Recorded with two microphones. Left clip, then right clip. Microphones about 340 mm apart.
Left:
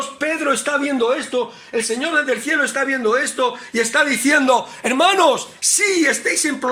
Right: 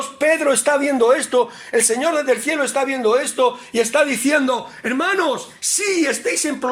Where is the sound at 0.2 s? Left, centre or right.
Centre.